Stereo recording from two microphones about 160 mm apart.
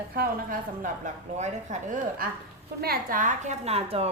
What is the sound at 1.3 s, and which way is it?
Speech, 45° right (ahead or behind).